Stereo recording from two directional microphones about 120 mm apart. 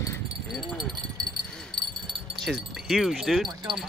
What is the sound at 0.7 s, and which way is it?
Wind chime, centre (ahead or behind).